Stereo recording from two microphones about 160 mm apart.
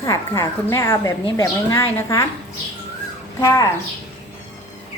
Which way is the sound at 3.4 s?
20° left (ahead or behind).